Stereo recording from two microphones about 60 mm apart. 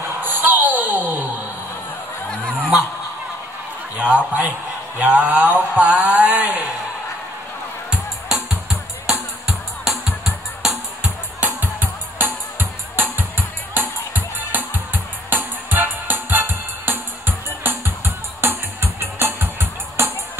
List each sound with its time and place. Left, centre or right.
0.2 s basketball bounce: right
3.9 s a man's voice: centre
4.9 s a sound: right
7.9 s music: centre
11.4 s music: right